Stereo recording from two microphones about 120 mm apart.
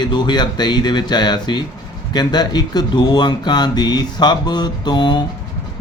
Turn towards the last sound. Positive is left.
turn(degrees=40)  # may be behind; listen again after turning